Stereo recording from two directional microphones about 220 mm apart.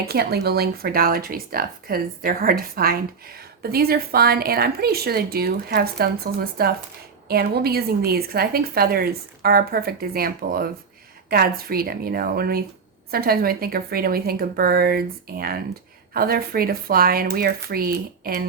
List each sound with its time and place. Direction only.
0.0 s speech: 45° right (ahead or behind)